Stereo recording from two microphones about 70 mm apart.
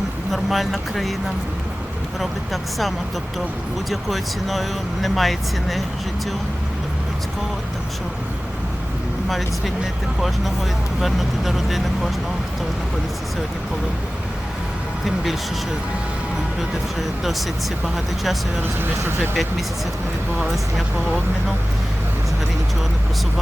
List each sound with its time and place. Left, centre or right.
0.3 s speech: centre
2.5 s speech: centre
9.3 s speech: centre
15.0 s speech: centre
16.6 s speech: centre
18.6 s speech: right